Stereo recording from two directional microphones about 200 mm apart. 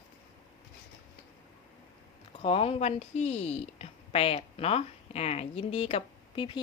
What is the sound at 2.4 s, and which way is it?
A woman's voice, 30° left (ahead or behind).